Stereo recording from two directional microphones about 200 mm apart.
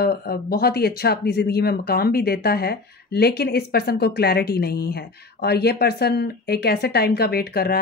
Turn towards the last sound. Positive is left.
turn(degrees=50)  # may be behind; listen again after turning